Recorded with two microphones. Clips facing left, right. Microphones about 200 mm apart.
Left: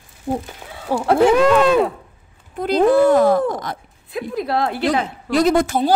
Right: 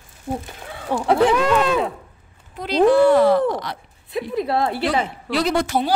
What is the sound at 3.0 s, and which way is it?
Speech, 45° left (ahead or behind).